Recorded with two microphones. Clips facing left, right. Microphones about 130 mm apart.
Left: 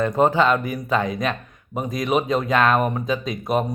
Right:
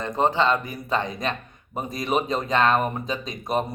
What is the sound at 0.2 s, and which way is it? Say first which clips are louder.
Speech: left 2 dB; 10° left (ahead or behind).